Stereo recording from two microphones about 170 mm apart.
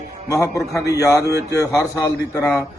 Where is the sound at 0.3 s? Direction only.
20° left (ahead or behind).